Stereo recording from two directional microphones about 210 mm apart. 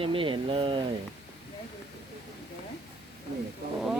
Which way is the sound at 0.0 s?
25° right (ahead or behind).